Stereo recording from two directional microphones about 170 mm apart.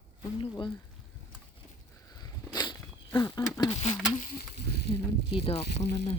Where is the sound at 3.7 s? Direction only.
40° left (ahead or behind).